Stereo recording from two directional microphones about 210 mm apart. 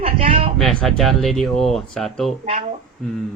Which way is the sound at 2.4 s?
30° right (ahead or behind).